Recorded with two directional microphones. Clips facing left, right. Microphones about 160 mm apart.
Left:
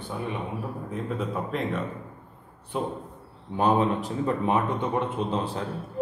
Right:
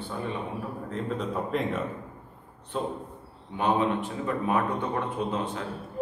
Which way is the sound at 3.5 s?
40° left (ahead or behind).